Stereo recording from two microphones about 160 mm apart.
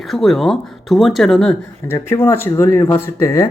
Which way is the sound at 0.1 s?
Centre (ahead or behind).